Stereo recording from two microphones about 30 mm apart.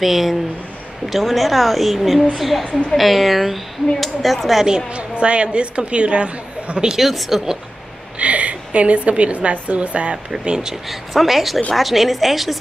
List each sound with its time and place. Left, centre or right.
0.0 s speech: centre
4.9 s a woman's voice: right
7.0 s speech: centre
8.2 s a woman's voice: right
10.4 s speech: right
10.7 s speech: centre